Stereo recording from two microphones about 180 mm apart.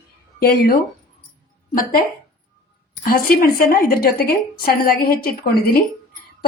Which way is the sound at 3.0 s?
55° left (ahead or behind).